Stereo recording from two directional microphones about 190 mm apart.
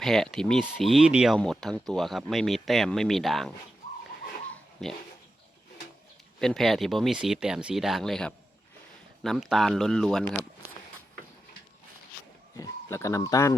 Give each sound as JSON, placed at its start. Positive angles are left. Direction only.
{"t": 0.0, "sound": "speech", "side_deg": 0}
{"t": 4.4, "sound": "a sound", "side_deg": 5}
{"t": 6.4, "sound": "speech", "side_deg": 0}
{"t": 12.5, "sound": "speech", "side_deg": 15}